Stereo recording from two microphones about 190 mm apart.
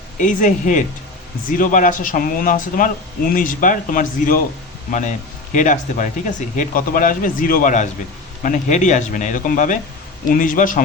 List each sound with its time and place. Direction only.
0.2 s speech: 40° left (ahead or behind)